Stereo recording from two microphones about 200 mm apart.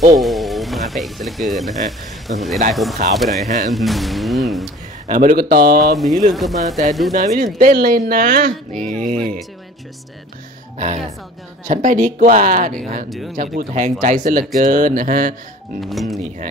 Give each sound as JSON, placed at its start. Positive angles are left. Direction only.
{"t": 0.2, "sound": "speech", "side_deg": 0}
{"t": 3.4, "sound": "speech", "side_deg": -35}
{"t": 3.7, "sound": "speech", "side_deg": 0}
{"t": 5.0, "sound": "speech", "side_deg": -40}
{"t": 5.9, "sound": "speech", "side_deg": 0}
{"t": 7.2, "sound": "speech", "side_deg": -40}
{"t": 10.8, "sound": "speech", "side_deg": -35}
{"t": 15.8, "sound": "speech", "side_deg": 0}